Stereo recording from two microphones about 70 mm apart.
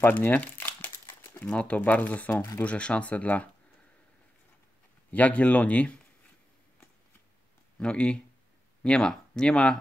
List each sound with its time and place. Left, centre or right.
0.0 s speech: left
5.1 s speech: left
7.8 s speech: centre